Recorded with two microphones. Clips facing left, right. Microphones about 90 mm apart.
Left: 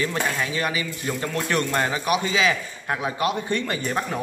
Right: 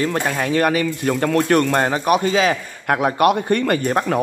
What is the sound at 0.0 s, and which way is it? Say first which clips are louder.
Speech: right 5 dB; 50° right (ahead or behind).